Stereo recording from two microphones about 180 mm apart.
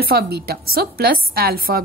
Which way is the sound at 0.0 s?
60° right (ahead or behind).